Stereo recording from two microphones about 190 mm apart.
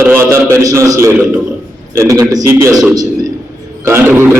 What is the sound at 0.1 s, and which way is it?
A man's voice, 15° right (ahead or behind).